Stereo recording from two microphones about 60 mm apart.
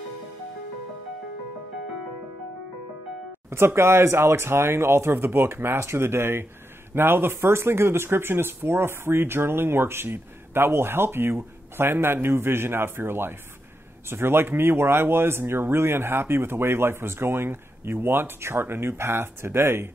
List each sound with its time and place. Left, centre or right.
3.4 s speech: right